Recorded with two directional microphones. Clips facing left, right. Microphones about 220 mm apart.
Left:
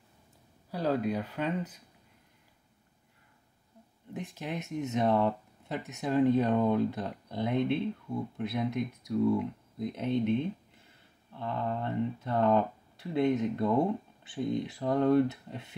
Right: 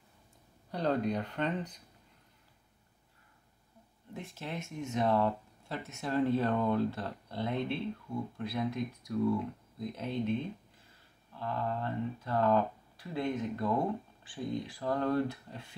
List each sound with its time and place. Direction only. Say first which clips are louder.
0.7 s speech: left 1 dB; 5° left (ahead or behind)
4.1 s speech: left 4 dB; 15° left (ahead or behind)
11.3 s speech: left 2 dB; 20° left (ahead or behind)